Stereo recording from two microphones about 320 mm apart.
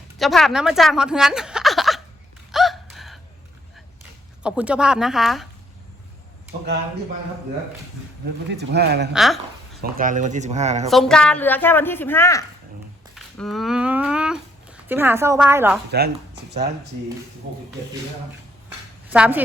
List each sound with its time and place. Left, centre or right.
0.2 s speech: centre
2.5 s gasp: centre
4.4 s speech: centre
8.4 s speech: right
9.1 s speech: centre
10.0 s speech: right
10.8 s a woman's voice: centre
15.9 s speech: right
19.0 s speech: centre